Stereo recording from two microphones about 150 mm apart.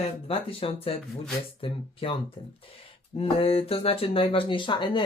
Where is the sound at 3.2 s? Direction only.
40° left (ahead or behind).